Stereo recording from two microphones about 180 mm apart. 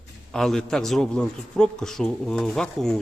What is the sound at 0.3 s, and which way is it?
Speech, centre (ahead or behind).